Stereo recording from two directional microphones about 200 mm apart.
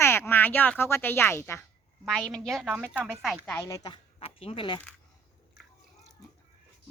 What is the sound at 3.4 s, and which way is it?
Speech, 15° left (ahead or behind).